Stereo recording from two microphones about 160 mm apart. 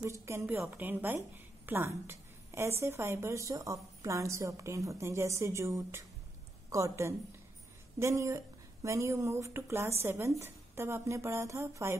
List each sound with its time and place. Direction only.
0.0 s a woman's voice: 15° right (ahead or behind)